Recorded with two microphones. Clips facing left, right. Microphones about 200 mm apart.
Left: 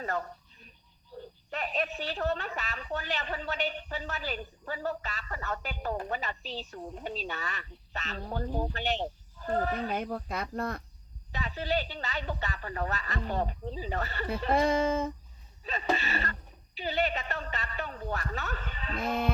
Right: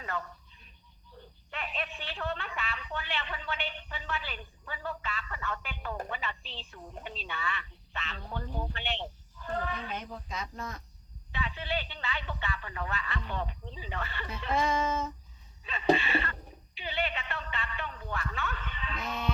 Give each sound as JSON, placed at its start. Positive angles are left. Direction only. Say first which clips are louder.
{"t": 0.0, "sound": "a sound", "louder": "left 4 dB", "side_deg": 40}
{"t": 1.5, "sound": "a woman's voice", "louder": "left 5 dB", "side_deg": 40}
{"t": 10.0, "sound": "speech", "louder": "left 6 dB", "side_deg": 60}
{"t": 11.3, "sound": "a woman's voice", "louder": "left 4 dB", "side_deg": 40}
{"t": 14.5, "sound": "speech", "louder": "left 3 dB", "side_deg": 55}
{"t": 15.6, "sound": "a woman's voice", "louder": "right 4 dB", "side_deg": 40}